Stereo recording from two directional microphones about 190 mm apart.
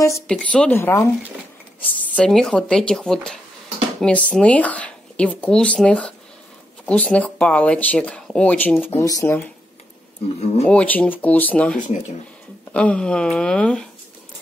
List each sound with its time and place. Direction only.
0.3 s speech: 5° left (ahead or behind)
2.1 s speech: centre (ahead or behind)
10.2 s speech: 35° left (ahead or behind)
10.7 s speech: 5° left (ahead or behind)